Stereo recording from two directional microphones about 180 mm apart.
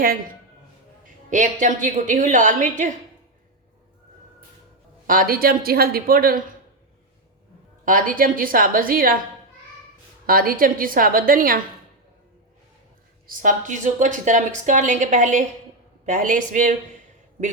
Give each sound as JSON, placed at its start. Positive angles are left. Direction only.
{"t": 1.3, "sound": "a woman's voice", "side_deg": -45}
{"t": 5.0, "sound": "speech", "side_deg": -50}
{"t": 7.9, "sound": "a woman's voice", "side_deg": -50}
{"t": 10.2, "sound": "a woman's voice", "side_deg": -55}
{"t": 13.2, "sound": "a woman's voice", "side_deg": -50}